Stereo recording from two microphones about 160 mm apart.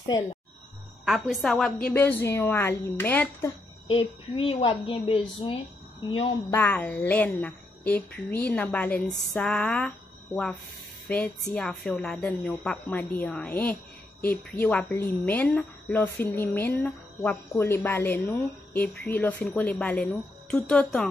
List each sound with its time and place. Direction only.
1.0 s a woman's voice: centre (ahead or behind)
3.8 s a woman's voice: 35° left (ahead or behind)
6.5 s a woman's voice: 10° left (ahead or behind)